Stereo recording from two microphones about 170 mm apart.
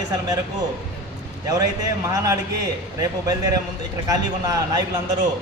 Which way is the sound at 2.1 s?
20° right (ahead or behind).